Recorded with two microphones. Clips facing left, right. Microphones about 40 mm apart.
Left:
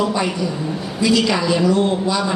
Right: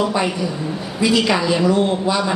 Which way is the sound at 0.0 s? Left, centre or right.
Centre.